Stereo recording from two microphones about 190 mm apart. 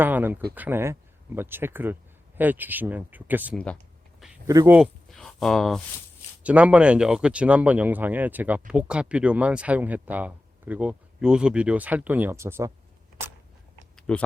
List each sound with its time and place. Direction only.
0.0 s speech: 10° right (ahead or behind)
4.8 s speech: centre (ahead or behind); by 12.7 s 15° right (ahead or behind)
13.9 s a sound: 5° left (ahead or behind)